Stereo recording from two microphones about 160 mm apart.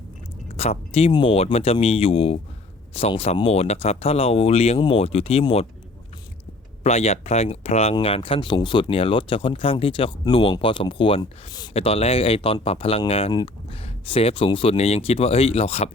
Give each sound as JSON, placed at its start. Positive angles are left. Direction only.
{"t": 0.5, "sound": "speech", "side_deg": 40}
{"t": 6.8, "sound": "speech", "side_deg": 40}
{"t": 11.7, "sound": "speech", "side_deg": 35}